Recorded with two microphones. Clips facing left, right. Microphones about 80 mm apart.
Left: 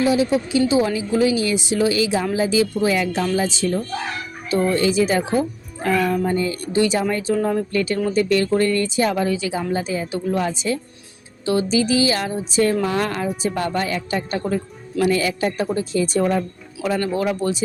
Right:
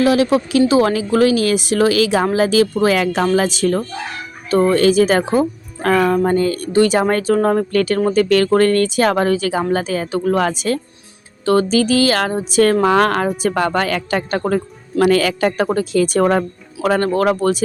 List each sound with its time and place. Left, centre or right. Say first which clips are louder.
0.0 s speech: right 4 dB; right
0.7 s a woman's voice: right 4 dB; right
12.8 s a woman's voice: right 8 dB; right